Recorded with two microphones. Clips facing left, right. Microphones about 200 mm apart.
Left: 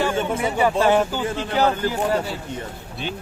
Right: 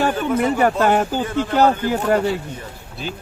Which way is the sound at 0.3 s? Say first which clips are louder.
Right 4 dB; 55° right (ahead or behind).